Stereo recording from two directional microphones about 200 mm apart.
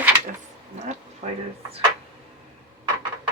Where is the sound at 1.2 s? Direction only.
35° right (ahead or behind).